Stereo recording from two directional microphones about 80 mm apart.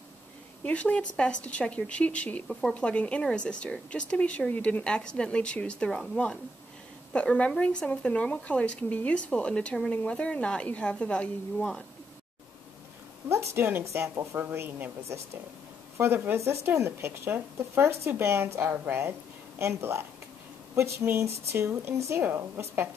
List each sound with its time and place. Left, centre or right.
0.7 s speech: centre
13.3 s a woman's voice: right